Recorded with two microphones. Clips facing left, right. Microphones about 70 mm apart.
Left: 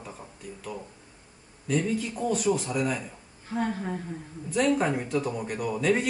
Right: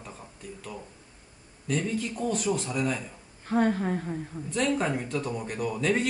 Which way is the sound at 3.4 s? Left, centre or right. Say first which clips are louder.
Right 5 dB; right.